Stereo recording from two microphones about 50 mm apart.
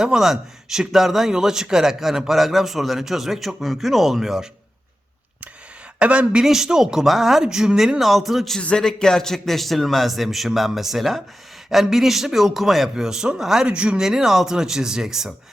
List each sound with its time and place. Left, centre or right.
0.0 s a man's voice: centre
6.0 s a woman's voice: right
6.4 s a man's voice: centre
7.9 s a man's voice: centre
8.6 s a man's voice: centre
13.7 s a woman's voice: centre
14.0 s a man's voice: centre